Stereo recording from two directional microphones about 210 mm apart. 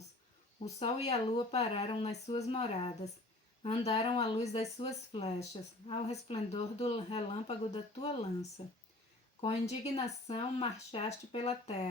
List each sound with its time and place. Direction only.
0.6 s speech: 30° left (ahead or behind)